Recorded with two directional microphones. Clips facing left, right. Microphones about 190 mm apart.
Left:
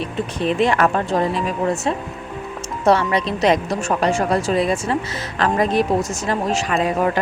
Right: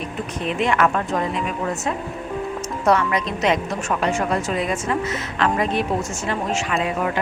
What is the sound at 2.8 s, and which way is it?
A woman's voice, 30° left (ahead or behind).